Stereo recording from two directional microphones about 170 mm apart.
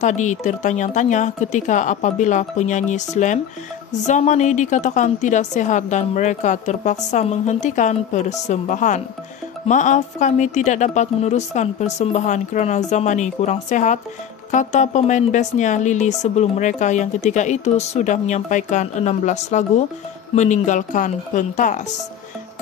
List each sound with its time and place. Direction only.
0.0 s speech: 45° left (ahead or behind)